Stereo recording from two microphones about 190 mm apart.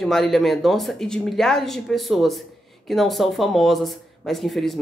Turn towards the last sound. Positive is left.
turn(degrees=0)  # may be behind; listen again after turning